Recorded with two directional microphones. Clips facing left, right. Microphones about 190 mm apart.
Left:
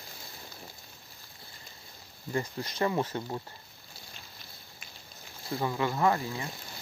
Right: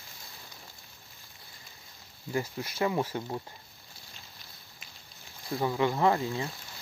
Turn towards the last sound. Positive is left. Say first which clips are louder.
# right 1 dB
turn(degrees=-20)  # may be behind; listen again after turning